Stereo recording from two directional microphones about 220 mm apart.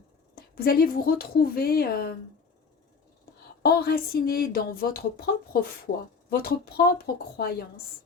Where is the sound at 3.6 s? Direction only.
45° left (ahead or behind).